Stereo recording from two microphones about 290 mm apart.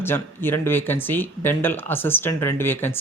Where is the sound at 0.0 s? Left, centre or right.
Centre.